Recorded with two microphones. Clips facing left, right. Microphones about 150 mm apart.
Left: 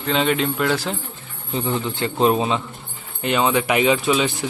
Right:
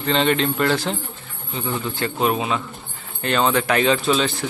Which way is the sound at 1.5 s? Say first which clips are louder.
Left 3 dB; 25° left (ahead or behind).